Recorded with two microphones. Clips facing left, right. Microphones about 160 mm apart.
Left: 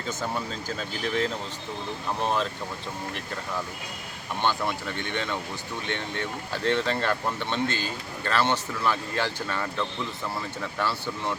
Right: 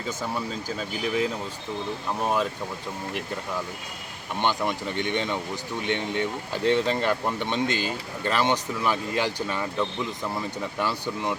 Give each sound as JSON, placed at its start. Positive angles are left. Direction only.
{"t": 0.8, "sound": "speech", "side_deg": -10}
{"t": 4.4, "sound": "speech", "side_deg": -15}